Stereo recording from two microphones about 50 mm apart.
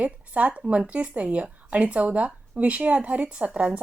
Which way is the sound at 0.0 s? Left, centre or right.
Right.